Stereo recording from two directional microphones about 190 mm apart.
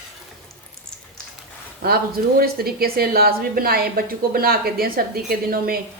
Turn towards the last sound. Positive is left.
turn(degrees=-50)  # may be behind; listen again after turning